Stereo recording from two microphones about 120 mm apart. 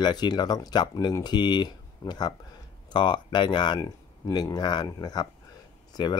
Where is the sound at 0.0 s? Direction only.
35° left (ahead or behind).